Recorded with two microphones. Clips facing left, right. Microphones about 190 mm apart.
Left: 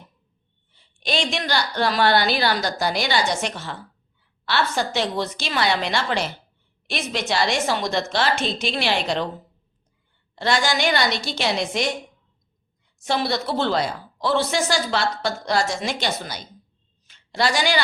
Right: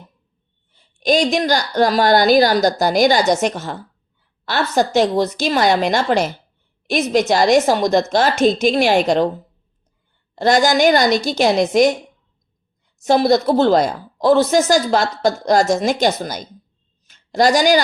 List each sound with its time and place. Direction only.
0.7 s speech: 45° right (ahead or behind)
10.3 s speech: 45° right (ahead or behind)
13.0 s speech: 40° right (ahead or behind)
17.1 s a sound: 45° right (ahead or behind)